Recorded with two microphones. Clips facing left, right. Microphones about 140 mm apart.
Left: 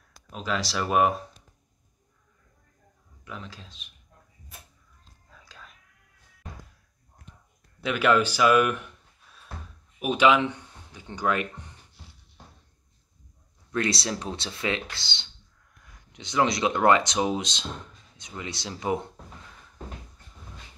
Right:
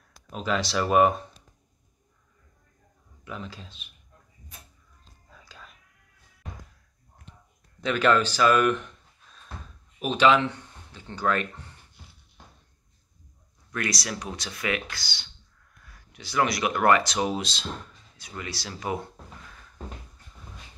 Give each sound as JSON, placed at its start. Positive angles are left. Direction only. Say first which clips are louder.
{"t": 0.3, "sound": "speech", "louder": "right 2 dB", "side_deg": 0}
{"t": 3.3, "sound": "speech", "louder": "right 3 dB", "side_deg": 0}
{"t": 5.3, "sound": "whispering", "louder": "right 1 dB", "side_deg": 0}
{"t": 7.8, "sound": "speech", "louder": "even", "side_deg": 10}
{"t": 13.7, "sound": "speech", "louder": "left 4 dB", "side_deg": 25}